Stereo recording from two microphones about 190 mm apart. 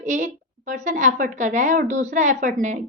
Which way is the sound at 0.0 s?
40° right (ahead or behind).